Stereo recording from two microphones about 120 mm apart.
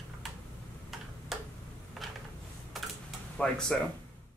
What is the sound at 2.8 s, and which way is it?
Typing, centre (ahead or behind).